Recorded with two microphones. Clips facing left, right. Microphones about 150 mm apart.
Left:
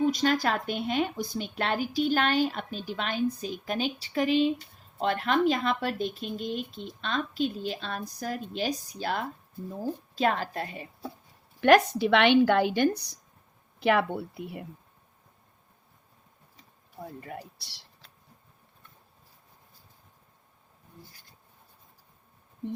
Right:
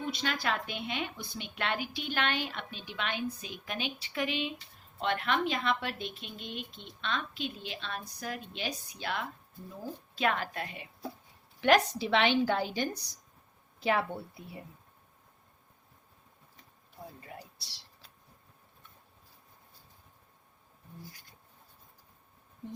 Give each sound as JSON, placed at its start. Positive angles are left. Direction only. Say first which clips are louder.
{"t": 0.0, "sound": "a woman's voice", "louder": "left 9 dB", "side_deg": 40}
{"t": 11.6, "sound": "a woman's voice", "louder": "left 6 dB", "side_deg": 55}
{"t": 17.2, "sound": "a woman's voice", "louder": "left 7 dB", "side_deg": 60}